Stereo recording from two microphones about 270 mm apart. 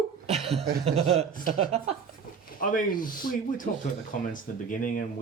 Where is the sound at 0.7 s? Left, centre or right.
Right.